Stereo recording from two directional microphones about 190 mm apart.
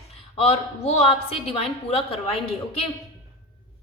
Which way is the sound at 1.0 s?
30° left (ahead or behind).